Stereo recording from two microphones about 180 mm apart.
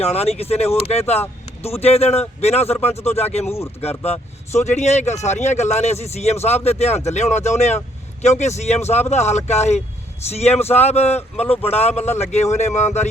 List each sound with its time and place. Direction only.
0.0 s speech: 35° left (ahead or behind)